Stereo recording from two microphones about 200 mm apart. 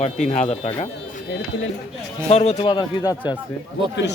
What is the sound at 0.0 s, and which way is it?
Speech, 35° left (ahead or behind).